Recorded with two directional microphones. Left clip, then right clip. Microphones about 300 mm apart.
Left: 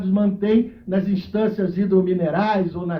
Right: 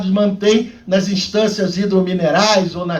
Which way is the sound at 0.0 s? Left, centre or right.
Right.